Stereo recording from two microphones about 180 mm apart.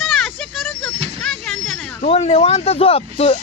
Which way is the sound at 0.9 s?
35° right (ahead or behind).